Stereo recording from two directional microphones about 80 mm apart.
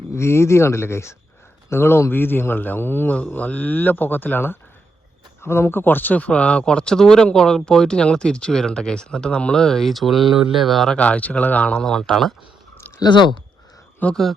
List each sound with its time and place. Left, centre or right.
0.1 s a man's voice: left; by 10.9 s centre
10.9 s speech: centre
11.8 s speech: centre
13.0 s speech: left
14.0 s a man's voice: left